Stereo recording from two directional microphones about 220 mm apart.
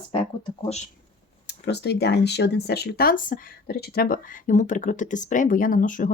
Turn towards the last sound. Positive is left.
turn(degrees=35)  # may be behind; listen again after turning